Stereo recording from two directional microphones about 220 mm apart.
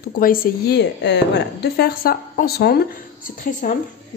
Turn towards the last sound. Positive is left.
turn(degrees=35)  # may be behind; listen again after turning